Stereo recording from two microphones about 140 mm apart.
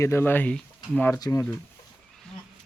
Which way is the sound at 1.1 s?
20° left (ahead or behind).